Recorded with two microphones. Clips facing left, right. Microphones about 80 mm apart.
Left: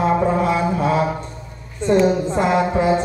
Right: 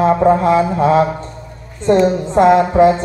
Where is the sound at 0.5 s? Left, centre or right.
Right.